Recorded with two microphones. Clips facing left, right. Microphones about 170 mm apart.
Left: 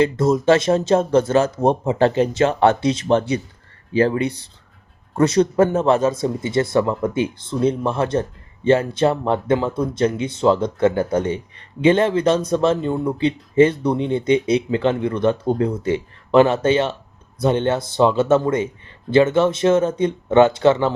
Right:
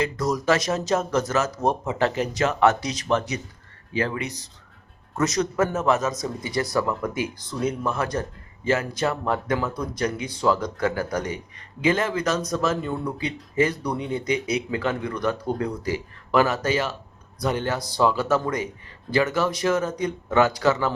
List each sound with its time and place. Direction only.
0.0 s speech: 25° left (ahead or behind)